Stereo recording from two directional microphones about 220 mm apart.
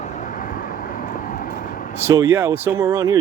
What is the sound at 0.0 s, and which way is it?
Vehicle, 35° left (ahead or behind).